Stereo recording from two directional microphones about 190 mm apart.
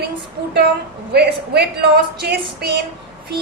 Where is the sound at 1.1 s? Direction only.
60° right (ahead or behind).